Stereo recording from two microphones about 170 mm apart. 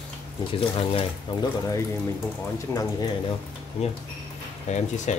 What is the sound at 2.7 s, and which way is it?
Speech, 15° left (ahead or behind).